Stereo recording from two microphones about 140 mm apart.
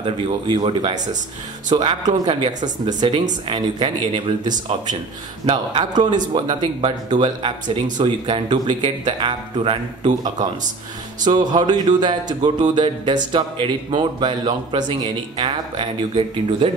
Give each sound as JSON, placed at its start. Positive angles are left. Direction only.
{"t": 0.0, "sound": "speech", "side_deg": -30}
{"t": 11.2, "sound": "speech", "side_deg": -30}